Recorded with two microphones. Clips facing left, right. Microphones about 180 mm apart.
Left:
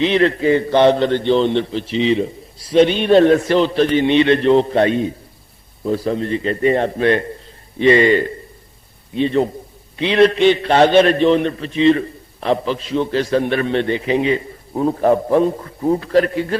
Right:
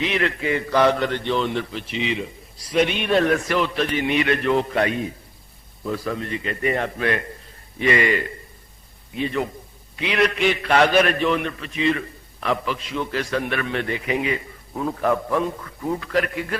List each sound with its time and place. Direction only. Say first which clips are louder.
0.0 s a man's voice: left 9 dB; 30° left (ahead or behind)